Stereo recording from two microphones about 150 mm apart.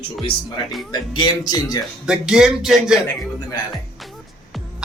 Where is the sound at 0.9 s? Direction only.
30° left (ahead or behind).